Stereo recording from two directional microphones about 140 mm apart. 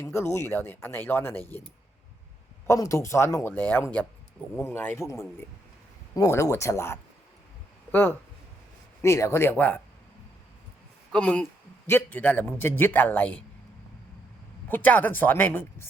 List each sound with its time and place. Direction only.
0.0 s speech: 15° left (ahead or behind)
2.6 s speech: 25° left (ahead or behind)
9.0 s speech: 20° left (ahead or behind)
11.1 s speech: 10° left (ahead or behind)
14.7 s speech: 10° left (ahead or behind)